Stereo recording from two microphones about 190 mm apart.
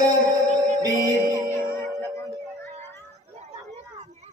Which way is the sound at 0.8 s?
15° right (ahead or behind).